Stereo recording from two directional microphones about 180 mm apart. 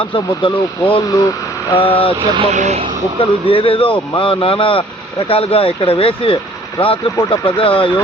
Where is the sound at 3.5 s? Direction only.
30° left (ahead or behind).